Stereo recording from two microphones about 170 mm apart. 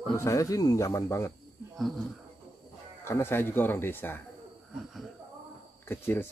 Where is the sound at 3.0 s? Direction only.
15° left (ahead or behind).